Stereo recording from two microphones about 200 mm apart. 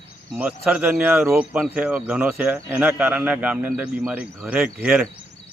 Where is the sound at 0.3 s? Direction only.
10° right (ahead or behind).